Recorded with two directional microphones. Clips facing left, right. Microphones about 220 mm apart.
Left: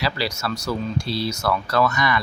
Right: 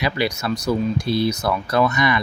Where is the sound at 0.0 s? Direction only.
20° right (ahead or behind).